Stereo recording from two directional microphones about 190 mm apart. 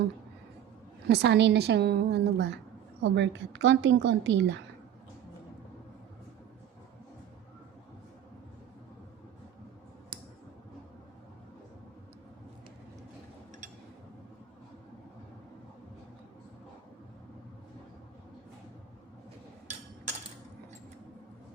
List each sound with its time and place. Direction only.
1.0 s a woman's voice: 60° right (ahead or behind)